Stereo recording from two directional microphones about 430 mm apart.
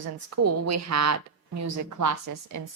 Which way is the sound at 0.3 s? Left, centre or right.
Right.